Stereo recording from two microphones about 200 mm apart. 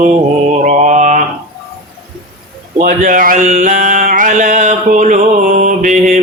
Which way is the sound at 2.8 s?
40° right (ahead or behind).